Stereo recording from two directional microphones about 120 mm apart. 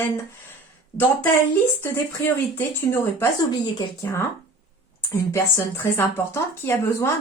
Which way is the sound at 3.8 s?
25° left (ahead or behind).